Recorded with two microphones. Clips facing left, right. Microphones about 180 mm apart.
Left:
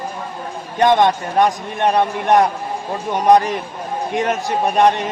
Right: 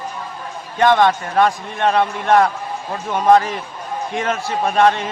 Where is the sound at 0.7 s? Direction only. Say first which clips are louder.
Even; 20° left (ahead or behind).